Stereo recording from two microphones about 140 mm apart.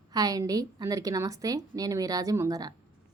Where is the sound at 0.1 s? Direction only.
25° right (ahead or behind).